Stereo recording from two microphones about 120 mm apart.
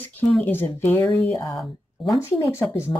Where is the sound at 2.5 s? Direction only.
20° left (ahead or behind).